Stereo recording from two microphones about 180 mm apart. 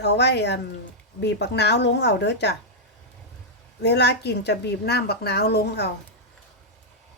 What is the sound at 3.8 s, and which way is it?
A woman's voice, 70° left (ahead or behind).